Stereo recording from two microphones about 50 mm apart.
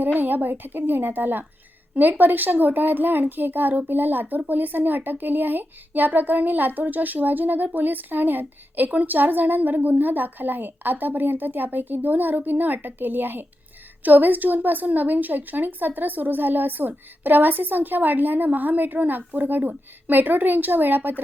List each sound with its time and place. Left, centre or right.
0.0 s speech: right